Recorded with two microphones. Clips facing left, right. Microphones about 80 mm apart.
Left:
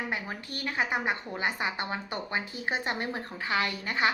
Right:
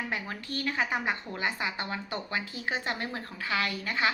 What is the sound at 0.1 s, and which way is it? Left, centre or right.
A woman's voice, left.